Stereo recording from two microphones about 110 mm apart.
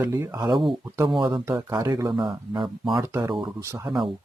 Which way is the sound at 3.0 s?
25° right (ahead or behind).